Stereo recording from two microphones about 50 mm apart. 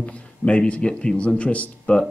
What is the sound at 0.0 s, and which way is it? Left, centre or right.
Speech, left.